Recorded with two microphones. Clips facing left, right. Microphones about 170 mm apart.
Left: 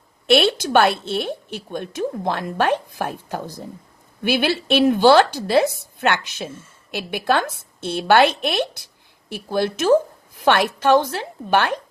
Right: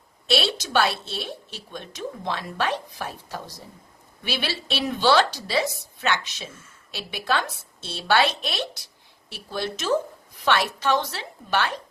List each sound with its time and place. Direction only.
0.3 s a woman's voice: 55° left (ahead or behind)